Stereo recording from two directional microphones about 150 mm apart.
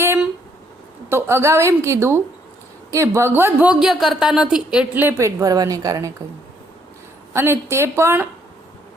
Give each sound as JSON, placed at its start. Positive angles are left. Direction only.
{"t": 1.1, "sound": "speech", "side_deg": -20}
{"t": 7.3, "sound": "speech", "side_deg": -15}